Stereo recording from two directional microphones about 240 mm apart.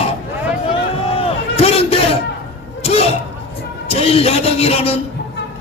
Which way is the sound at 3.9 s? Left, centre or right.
Left.